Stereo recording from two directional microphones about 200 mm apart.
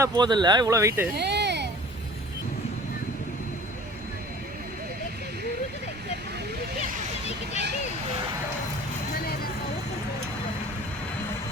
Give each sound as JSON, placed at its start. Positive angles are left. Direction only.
{"t": 0.0, "sound": "speech", "side_deg": -20}
{"t": 1.2, "sound": "a sound", "side_deg": -55}
{"t": 9.1, "sound": "vehicle", "side_deg": 50}